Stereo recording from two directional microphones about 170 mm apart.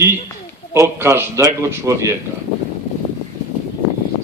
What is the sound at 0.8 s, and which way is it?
A man's voice, 15° right (ahead or behind).